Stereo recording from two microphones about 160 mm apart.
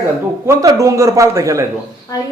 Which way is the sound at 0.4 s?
20° right (ahead or behind).